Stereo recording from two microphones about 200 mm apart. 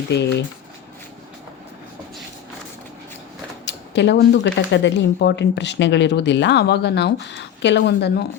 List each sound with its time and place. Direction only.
0.2 s speech: 60° left (ahead or behind)
3.7 s speech: 60° left (ahead or behind)